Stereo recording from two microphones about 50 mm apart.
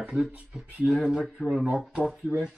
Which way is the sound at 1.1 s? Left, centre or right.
Centre.